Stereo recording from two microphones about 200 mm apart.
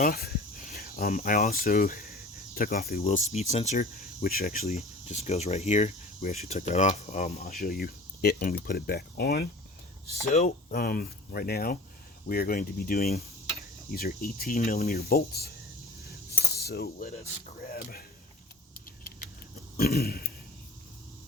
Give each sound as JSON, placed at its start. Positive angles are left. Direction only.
{"t": 0.0, "sound": "speech", "side_deg": 50}
{"t": 4.6, "sound": "speech", "side_deg": 35}
{"t": 7.6, "sound": "speech", "side_deg": 50}
{"t": 10.2, "sound": "speech", "side_deg": 35}
{"t": 16.6, "sound": "cutlery", "side_deg": 50}
{"t": 17.7, "sound": "speech", "side_deg": 45}
{"t": 18.7, "sound": "keys jangling", "side_deg": 45}
{"t": 19.7, "sound": "a sound", "side_deg": 50}